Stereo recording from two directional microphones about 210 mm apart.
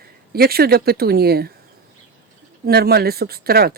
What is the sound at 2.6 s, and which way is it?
Speech, 50° right (ahead or behind).